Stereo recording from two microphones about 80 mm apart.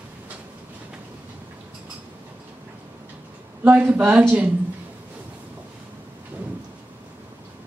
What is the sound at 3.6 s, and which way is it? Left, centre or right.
Speech, right.